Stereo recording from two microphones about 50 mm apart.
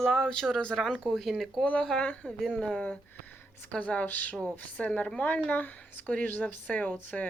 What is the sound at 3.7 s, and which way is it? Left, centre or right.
A woman's voice, left.